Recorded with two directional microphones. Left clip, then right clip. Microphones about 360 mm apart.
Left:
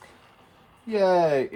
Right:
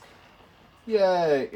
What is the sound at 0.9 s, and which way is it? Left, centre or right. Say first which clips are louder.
Speech: left 1 dB; centre.